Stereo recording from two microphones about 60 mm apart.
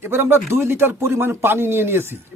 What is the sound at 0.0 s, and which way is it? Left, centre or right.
Speech, right.